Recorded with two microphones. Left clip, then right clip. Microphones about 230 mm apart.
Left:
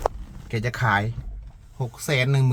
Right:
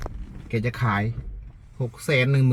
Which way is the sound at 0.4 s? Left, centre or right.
Centre.